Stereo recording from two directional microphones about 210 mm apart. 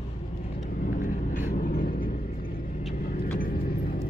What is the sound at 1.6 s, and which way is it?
Vehicle, 40° left (ahead or behind).